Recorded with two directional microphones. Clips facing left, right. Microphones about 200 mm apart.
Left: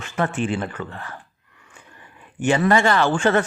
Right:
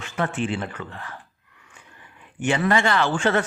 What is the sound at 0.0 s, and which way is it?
A man's voice, 45° left (ahead or behind).